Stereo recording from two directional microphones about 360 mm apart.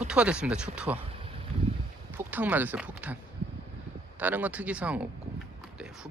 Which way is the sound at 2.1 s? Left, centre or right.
Centre.